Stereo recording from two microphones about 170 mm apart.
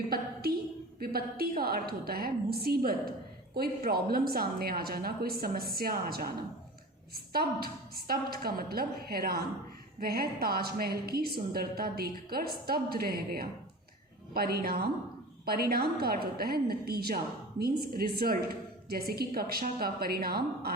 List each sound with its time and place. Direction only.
0.9 s a woman's voice: 60° right (ahead or behind)